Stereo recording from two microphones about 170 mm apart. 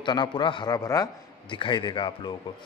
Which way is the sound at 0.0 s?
25° left (ahead or behind).